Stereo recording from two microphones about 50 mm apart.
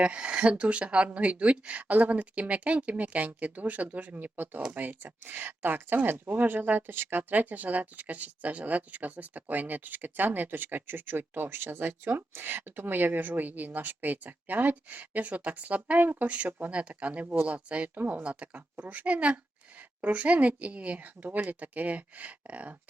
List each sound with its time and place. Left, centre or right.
0.0 s speech: right
7.2 s speech: right